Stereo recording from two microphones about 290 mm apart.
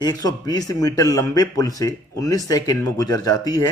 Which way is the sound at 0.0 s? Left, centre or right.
Centre.